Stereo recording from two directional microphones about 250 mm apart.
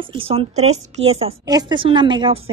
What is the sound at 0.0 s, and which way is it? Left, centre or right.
A woman's voice, right.